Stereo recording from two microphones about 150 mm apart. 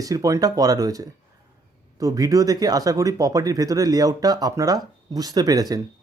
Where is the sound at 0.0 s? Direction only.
20° right (ahead or behind).